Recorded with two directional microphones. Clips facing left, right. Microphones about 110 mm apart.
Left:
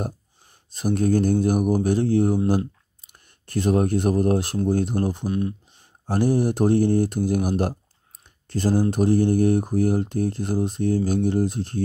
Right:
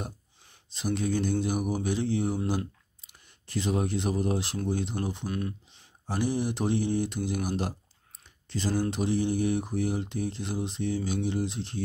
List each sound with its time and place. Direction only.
0.7 s speech: 45° left (ahead or behind)